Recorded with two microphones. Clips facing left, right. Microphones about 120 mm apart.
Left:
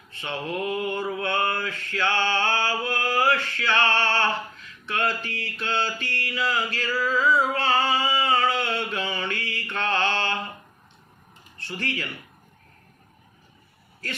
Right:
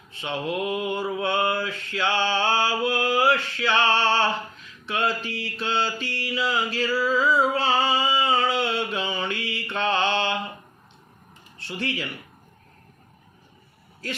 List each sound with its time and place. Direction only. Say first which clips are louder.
0.2 s mantra: right 2 dB; 20° right (ahead or behind)
7.5 s a sound: right 1 dB; 20° right (ahead or behind)
11.7 s mantra: right 2 dB; 20° right (ahead or behind)